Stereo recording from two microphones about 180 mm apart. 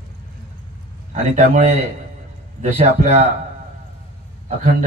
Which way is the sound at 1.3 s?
40° right (ahead or behind).